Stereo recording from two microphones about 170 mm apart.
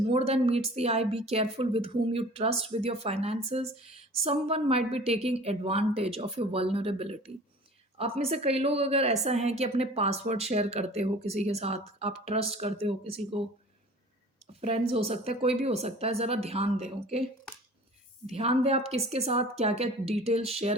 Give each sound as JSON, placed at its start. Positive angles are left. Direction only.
{"t": 0.0, "sound": "a woman's voice", "side_deg": -35}
{"t": 14.6, "sound": "a woman's voice", "side_deg": -35}
{"t": 18.3, "sound": "a woman's voice", "side_deg": -35}